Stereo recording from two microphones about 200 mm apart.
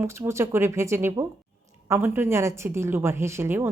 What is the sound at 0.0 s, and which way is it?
A woman's voice, 15° right (ahead or behind).